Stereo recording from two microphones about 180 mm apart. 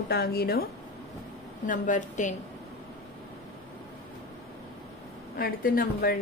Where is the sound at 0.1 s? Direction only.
60° left (ahead or behind).